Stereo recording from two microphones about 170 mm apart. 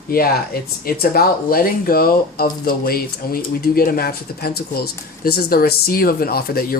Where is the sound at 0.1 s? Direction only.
60° left (ahead or behind).